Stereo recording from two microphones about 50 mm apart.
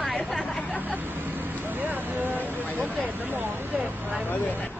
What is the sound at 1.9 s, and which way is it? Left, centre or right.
Vehicle, right.